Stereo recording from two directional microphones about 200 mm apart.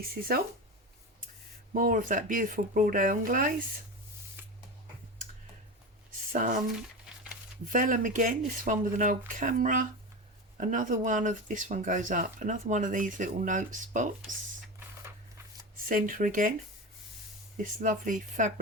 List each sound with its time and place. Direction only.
0.0 s speech: 50° right (ahead or behind)
1.7 s speech: 45° right (ahead or behind)
6.3 s speech: 40° right (ahead or behind)
7.7 s speech: 40° right (ahead or behind)
15.9 s speech: 45° right (ahead or behind)
17.6 s speech: 40° right (ahead or behind)